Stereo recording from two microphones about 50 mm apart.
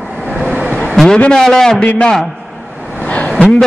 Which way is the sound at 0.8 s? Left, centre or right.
Centre.